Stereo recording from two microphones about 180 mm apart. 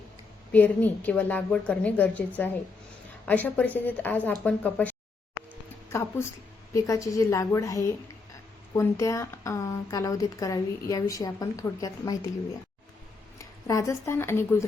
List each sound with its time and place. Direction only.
0.5 s a woman's voice: 10° left (ahead or behind)
13.4 s a woman's voice: 15° left (ahead or behind)